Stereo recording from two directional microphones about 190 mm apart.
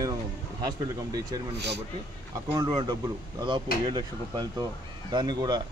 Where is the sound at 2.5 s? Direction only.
20° right (ahead or behind).